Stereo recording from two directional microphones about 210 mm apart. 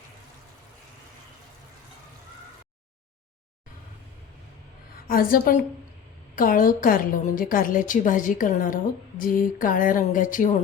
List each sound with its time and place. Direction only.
5.0 s a woman's voice: 40° left (ahead or behind)